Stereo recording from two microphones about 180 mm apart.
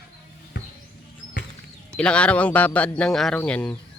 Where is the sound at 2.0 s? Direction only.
5° left (ahead or behind).